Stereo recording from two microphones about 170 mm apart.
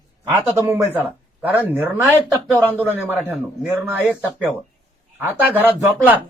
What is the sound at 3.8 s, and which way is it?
Speech, 10° right (ahead or behind).